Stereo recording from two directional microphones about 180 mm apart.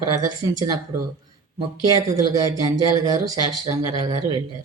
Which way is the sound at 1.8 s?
20° right (ahead or behind).